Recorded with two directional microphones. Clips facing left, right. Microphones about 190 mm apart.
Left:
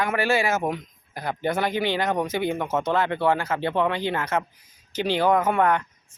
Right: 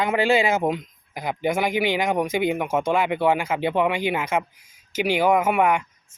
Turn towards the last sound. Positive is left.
turn(degrees=-10)  # may be behind; listen again after turning